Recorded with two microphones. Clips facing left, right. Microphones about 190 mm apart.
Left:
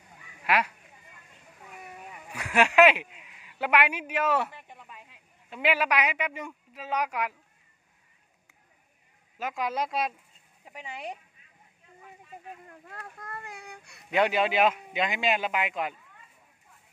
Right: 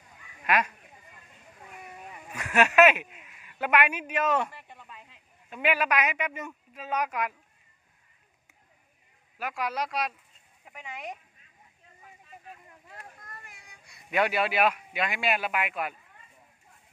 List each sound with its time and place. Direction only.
0.4 s speech: 10° left (ahead or behind)
1.8 s speech: 10° left (ahead or behind)
9.4 s a man's voice: 20° left (ahead or behind)
12.6 s a sound: 60° left (ahead or behind)
14.1 s a man's voice: 20° left (ahead or behind)